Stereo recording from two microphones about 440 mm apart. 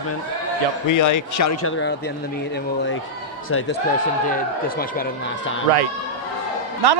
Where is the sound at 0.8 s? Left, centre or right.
Left.